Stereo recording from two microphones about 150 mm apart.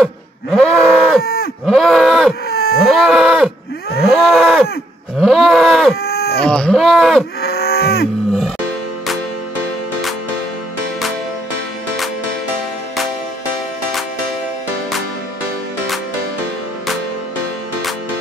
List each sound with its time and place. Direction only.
0.0 s cattle: centre (ahead or behind)
1.2 s cattle: 90° left
1.7 s livestock: centre (ahead or behind)
2.5 s a sound: 90° left
2.8 s livestock: centre (ahead or behind)
4.1 s moo: centre (ahead or behind)
5.2 s cattle: centre (ahead or behind)
6.0 s livestock: 90° left
6.4 s speech: 5° left (ahead or behind)
7.4 s cattle: 90° left